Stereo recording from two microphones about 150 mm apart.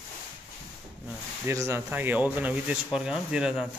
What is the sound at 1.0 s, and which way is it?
Speech, 20° right (ahead or behind).